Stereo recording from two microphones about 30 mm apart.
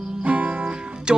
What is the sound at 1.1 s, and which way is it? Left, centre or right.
Music, right.